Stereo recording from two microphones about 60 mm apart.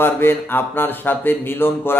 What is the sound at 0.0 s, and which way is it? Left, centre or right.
Speech, left.